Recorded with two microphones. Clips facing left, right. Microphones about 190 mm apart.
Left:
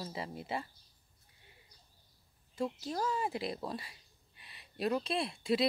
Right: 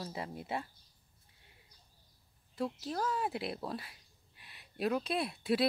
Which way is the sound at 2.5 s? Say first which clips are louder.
Even; centre (ahead or behind).